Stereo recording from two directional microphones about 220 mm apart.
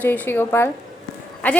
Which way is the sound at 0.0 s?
10° left (ahead or behind).